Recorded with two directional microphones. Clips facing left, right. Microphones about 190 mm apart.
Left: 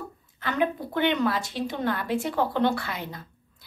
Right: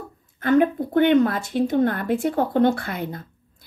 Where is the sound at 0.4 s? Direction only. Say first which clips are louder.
Right 9 dB; 45° right (ahead or behind).